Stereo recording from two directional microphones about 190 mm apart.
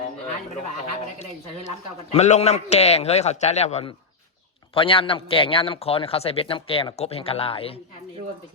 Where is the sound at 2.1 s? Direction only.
35° left (ahead or behind).